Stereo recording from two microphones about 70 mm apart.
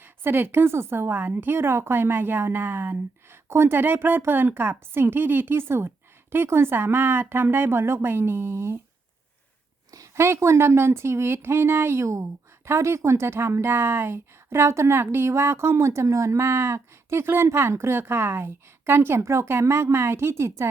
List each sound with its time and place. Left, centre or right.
0.0 s speech: right
9.9 s speech: right
12.0 s speech: right